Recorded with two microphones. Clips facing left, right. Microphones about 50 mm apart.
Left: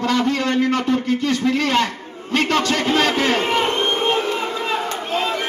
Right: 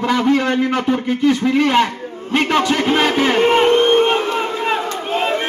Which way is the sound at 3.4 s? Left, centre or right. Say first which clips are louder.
Right 7 dB; right.